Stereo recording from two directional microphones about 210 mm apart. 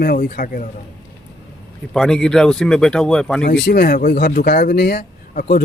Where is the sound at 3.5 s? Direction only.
45° left (ahead or behind).